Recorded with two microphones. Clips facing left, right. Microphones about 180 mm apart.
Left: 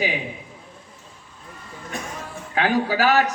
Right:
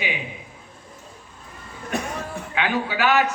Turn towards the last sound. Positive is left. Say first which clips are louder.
# left 1 dB
turn(degrees=35)  # may be behind; listen again after turning